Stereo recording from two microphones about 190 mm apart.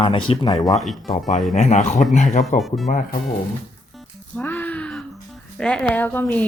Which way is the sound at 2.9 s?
45° left (ahead or behind).